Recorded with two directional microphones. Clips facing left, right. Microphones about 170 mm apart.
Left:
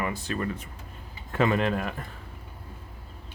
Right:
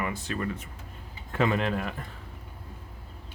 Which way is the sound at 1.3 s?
50° left (ahead or behind).